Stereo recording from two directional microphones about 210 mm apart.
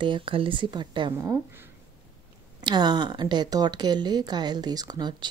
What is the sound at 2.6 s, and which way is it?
Speech, 20° right (ahead or behind).